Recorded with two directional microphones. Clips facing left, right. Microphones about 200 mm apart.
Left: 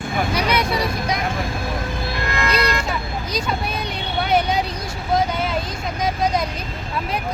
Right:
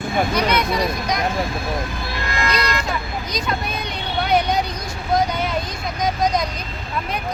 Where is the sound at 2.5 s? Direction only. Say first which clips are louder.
Left 2 dB; 30° left (ahead or behind).